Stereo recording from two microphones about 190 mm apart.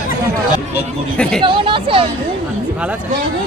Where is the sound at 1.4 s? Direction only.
25° right (ahead or behind).